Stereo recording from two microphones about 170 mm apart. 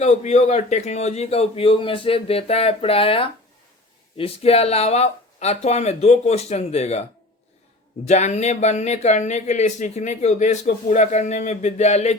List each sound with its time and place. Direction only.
0.0 s speech: 40° left (ahead or behind)
8.0 s speech: 40° left (ahead or behind)